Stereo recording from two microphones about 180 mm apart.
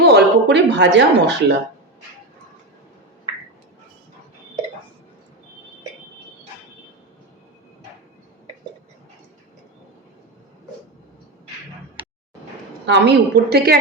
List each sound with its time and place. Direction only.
0.0 s speech: 65° right (ahead or behind)
12.8 s speech: 75° right (ahead or behind)